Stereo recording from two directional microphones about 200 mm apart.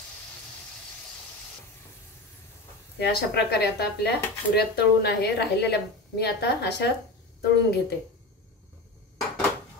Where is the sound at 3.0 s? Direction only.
55° left (ahead or behind).